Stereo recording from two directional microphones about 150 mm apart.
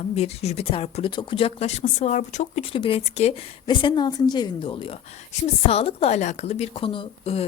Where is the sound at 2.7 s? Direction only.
35° left (ahead or behind).